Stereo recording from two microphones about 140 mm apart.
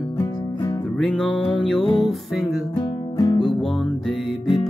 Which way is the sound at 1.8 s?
35° left (ahead or behind).